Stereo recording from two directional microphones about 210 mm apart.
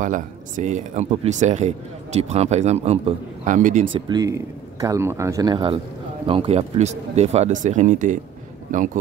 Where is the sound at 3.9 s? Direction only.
20° right (ahead or behind).